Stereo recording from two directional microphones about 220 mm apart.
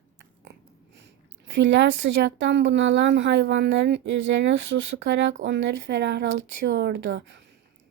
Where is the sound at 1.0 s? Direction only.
55° right (ahead or behind).